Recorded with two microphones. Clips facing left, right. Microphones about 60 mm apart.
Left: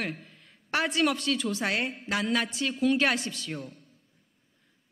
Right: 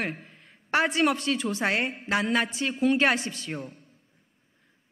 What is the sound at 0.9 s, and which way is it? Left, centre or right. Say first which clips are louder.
A woman's voice: right 2 dB; right.